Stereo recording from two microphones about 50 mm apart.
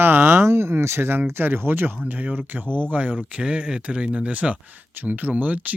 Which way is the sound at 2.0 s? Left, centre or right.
Right.